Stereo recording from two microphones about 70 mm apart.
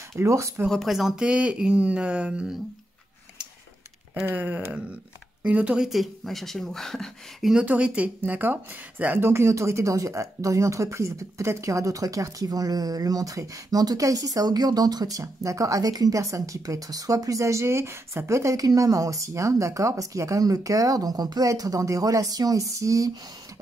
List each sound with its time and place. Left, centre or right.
0.1 s speech: right
0.7 s speech: centre
4.3 s speech: right
5.8 s speech: centre
7.6 s speech: centre; by 21.5 s right
21.5 s speech: right